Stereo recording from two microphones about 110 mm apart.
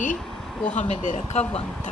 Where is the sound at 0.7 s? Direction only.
90° left.